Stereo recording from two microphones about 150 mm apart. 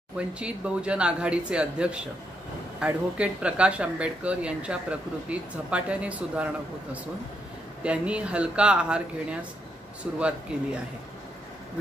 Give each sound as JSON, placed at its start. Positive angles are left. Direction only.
{"t": 0.2, "sound": "speech", "side_deg": -5}